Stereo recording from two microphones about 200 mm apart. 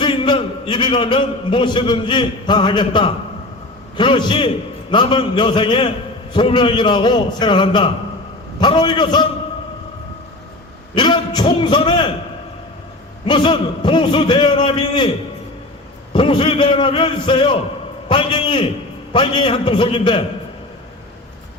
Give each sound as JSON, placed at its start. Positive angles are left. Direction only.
{"t": 0.0, "sound": "a man's voice", "side_deg": 25}
{"t": 10.9, "sound": "a man's voice", "side_deg": 20}
{"t": 13.2, "sound": "a man's voice", "side_deg": 25}
{"t": 16.1, "sound": "a man's voice", "side_deg": 25}